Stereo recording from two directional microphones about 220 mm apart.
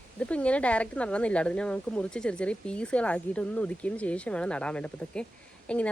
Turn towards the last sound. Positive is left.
turn(degrees=5)  # may be behind; listen again after turning